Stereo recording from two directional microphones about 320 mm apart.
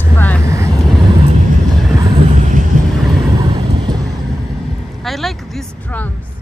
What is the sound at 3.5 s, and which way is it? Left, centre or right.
Vehicle, centre.